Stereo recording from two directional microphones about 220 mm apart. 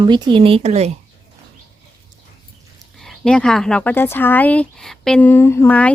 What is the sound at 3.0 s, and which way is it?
Speech, 5° left (ahead or behind).